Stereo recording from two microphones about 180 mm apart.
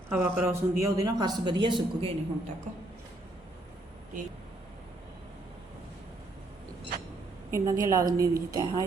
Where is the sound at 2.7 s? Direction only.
45° right (ahead or behind).